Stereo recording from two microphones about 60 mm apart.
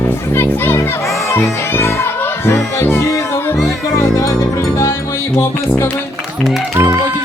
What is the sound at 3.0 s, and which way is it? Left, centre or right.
Music, left.